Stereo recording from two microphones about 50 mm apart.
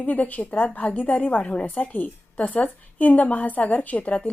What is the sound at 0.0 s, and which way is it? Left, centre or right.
A woman's voice, left.